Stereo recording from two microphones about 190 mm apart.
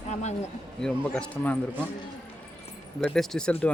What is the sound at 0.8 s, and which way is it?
Speech, 5° left (ahead or behind).